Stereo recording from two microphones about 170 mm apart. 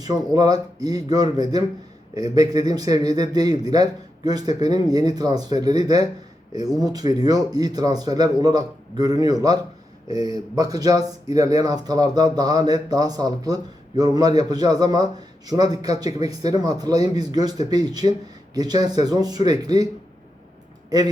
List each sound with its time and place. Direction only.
0.0 s speech: 20° right (ahead or behind)